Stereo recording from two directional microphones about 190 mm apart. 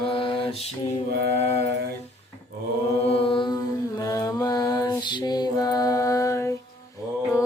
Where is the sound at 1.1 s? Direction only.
60° right (ahead or behind).